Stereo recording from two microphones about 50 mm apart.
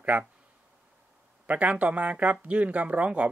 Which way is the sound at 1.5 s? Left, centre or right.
Right.